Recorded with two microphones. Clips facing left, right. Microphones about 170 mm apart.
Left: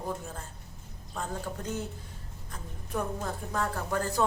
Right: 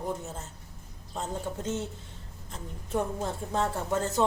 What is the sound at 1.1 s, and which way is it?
Speech, 20° right (ahead or behind).